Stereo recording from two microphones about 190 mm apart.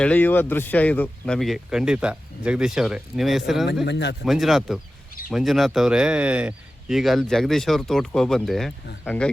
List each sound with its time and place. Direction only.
0.0 s speech: 10° left (ahead or behind)
3.8 s speech: 65° left (ahead or behind)
4.3 s speech: centre (ahead or behind)